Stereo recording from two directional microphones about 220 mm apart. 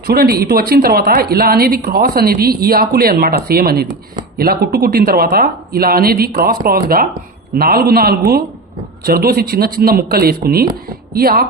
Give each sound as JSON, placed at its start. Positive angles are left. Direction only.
{"t": 0.1, "sound": "a woman's voice", "side_deg": -45}